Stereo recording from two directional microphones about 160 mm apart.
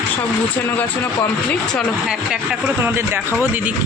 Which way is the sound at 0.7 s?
10° left (ahead or behind).